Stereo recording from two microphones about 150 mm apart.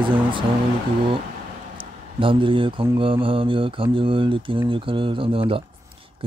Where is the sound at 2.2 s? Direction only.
35° right (ahead or behind).